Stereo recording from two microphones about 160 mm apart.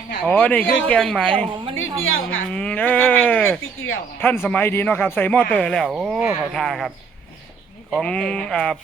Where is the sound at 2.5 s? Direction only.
5° left (ahead or behind).